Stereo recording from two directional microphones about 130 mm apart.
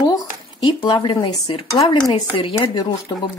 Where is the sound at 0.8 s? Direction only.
35° left (ahead or behind).